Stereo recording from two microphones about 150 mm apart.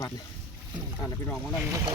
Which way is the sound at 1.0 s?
10° left (ahead or behind).